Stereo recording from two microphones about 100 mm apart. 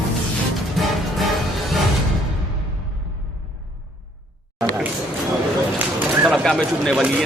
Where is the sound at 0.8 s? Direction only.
Centre (ahead or behind).